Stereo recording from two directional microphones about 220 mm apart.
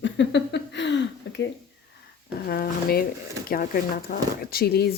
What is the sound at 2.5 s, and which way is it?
Speech, 45° left (ahead or behind).